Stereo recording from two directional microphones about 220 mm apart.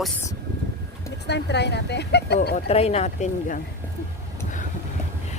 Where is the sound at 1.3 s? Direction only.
50° left (ahead or behind).